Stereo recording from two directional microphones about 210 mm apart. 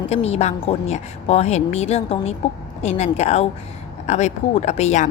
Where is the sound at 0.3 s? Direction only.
30° left (ahead or behind).